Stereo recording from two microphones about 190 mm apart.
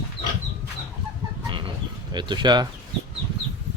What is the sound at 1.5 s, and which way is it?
Bird, 25° right (ahead or behind).